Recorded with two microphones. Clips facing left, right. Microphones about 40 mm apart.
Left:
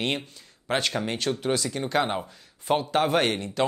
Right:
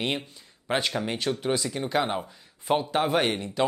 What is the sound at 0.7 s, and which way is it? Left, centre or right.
Speech, centre.